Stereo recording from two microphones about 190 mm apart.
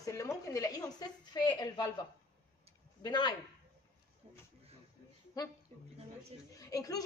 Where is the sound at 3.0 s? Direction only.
25° left (ahead or behind).